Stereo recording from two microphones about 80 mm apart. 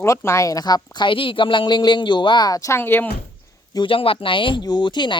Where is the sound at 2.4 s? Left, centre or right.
Left.